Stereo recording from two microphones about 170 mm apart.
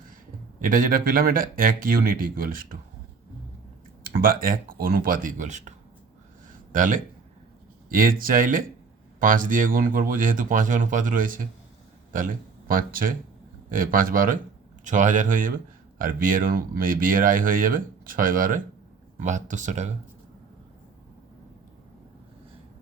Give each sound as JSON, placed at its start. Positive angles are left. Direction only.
{"t": 0.6, "sound": "speech", "side_deg": -55}
{"t": 4.0, "sound": "speech", "side_deg": -55}
{"t": 6.7, "sound": "speech", "side_deg": -50}